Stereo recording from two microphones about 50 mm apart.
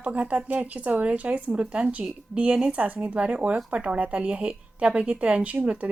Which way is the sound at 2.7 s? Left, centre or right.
Right.